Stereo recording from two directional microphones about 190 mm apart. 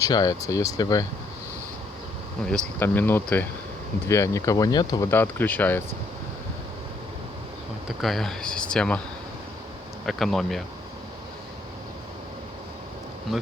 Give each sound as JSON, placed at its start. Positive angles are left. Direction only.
{"t": 0.0, "sound": "speech", "side_deg": 20}
{"t": 2.7, "sound": "speech", "side_deg": 10}
{"t": 8.0, "sound": "speech", "side_deg": 0}
{"t": 10.1, "sound": "speech", "side_deg": 0}